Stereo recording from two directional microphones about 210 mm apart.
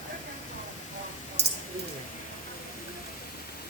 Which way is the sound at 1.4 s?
55° right (ahead or behind).